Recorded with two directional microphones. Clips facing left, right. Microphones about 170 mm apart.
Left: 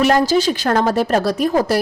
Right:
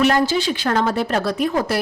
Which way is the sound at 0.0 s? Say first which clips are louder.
Left 3 dB; 40° left (ahead or behind).